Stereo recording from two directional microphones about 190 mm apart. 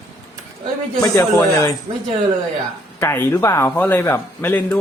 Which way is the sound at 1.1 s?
20° left (ahead or behind).